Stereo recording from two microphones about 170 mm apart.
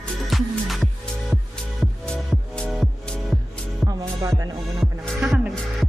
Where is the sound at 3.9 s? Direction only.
20° right (ahead or behind).